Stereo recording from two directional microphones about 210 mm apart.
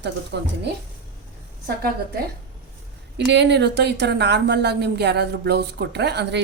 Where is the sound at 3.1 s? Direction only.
55° right (ahead or behind).